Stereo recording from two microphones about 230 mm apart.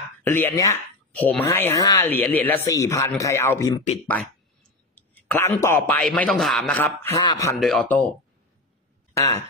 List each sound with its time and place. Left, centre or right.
0.2 s speech: centre
4.9 s speech: centre
9.1 s speech: centre